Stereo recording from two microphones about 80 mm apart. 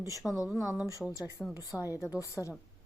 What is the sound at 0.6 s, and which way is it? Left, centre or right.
A woman's voice, left.